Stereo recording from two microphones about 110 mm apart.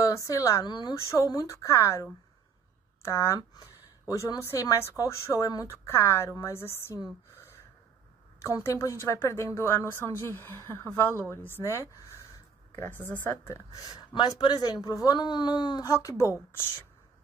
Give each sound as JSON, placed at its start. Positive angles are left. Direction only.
{"t": 0.0, "sound": "a woman's voice", "side_deg": 30}
{"t": 7.3, "sound": "gasp", "side_deg": 25}
{"t": 8.4, "sound": "speech", "side_deg": 25}
{"t": 13.9, "sound": "speech", "side_deg": 40}